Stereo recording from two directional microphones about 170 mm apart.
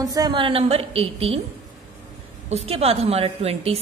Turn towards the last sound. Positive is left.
turn(degrees=-35)  # may be behind; listen again after turning